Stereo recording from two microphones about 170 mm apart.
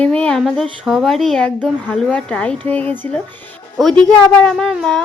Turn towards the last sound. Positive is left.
turn(degrees=0)  # may be behind; listen again after turning